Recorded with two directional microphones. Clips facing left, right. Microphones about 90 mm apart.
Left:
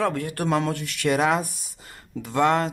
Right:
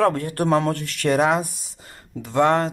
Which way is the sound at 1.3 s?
25° right (ahead or behind).